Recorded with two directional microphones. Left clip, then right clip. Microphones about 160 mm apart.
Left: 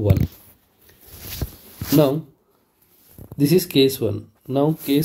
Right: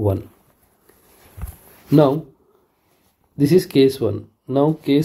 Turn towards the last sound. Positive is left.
turn(degrees=-15)  # may be behind; listen again after turning